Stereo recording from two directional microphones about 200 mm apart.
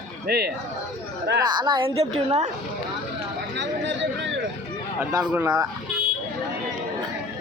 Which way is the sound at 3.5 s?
65° right (ahead or behind).